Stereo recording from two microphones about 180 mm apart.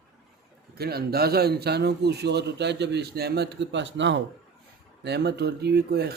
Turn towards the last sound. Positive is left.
turn(degrees=-60)  # may be behind; listen again after turning